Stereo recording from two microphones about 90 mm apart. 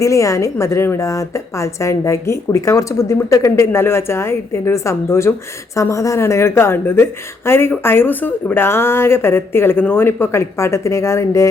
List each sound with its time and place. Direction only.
0.0 s a woman's voice: 35° left (ahead or behind)